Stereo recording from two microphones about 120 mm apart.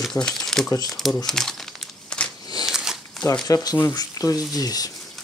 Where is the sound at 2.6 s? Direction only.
5° right (ahead or behind).